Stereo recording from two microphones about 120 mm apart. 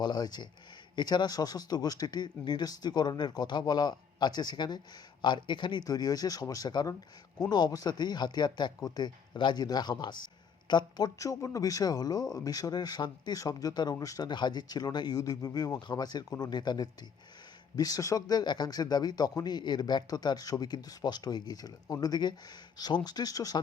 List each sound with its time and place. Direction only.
0.0 s speech: 35° left (ahead or behind)